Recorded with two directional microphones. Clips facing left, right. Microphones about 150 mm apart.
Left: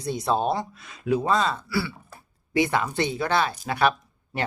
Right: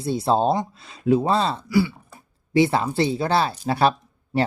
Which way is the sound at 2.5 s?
30° right (ahead or behind).